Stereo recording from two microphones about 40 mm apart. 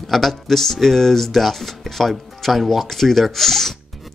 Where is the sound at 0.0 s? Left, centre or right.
Centre.